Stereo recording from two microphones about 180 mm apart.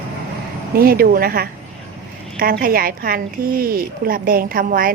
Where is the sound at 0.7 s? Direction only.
55° right (ahead or behind).